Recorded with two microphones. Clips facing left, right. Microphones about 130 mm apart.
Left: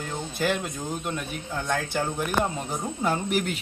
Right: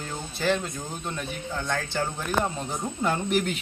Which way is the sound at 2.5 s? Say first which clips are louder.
Left 1 dB; 10° left (ahead or behind).